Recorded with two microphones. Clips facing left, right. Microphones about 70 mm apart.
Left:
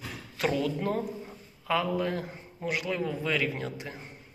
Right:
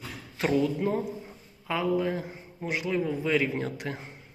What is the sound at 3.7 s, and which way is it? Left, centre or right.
Speech, right.